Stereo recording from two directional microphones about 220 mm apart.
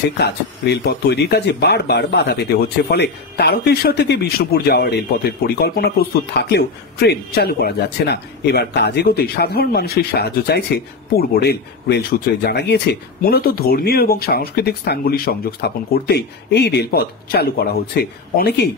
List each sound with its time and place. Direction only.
0.2 s a man's voice: 50° left (ahead or behind)